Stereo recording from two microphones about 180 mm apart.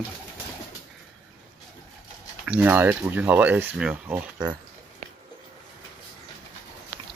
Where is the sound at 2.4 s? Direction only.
10° right (ahead or behind).